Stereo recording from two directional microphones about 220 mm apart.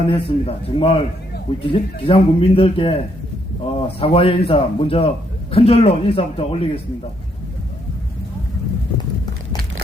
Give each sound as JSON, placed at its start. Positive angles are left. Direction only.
{"t": 0.1, "sound": "a man's voice", "side_deg": 25}